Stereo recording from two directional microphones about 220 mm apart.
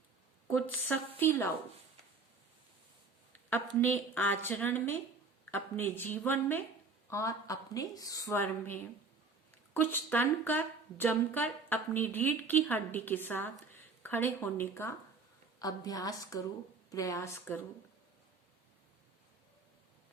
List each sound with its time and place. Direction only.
0.4 s a woman's voice: 10° left (ahead or behind)
3.5 s a woman's voice: 10° left (ahead or behind)